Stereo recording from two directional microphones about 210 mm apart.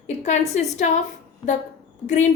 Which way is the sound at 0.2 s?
35° left (ahead or behind).